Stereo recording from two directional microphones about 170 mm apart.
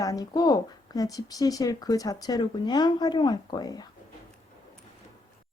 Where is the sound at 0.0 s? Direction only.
20° left (ahead or behind).